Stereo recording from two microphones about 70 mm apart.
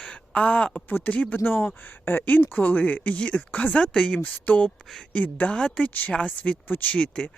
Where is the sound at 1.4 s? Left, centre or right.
Left.